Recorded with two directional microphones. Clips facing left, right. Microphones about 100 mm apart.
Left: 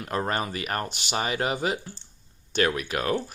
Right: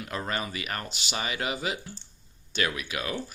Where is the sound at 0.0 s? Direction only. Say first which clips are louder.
Left 5 dB; 40° left (ahead or behind).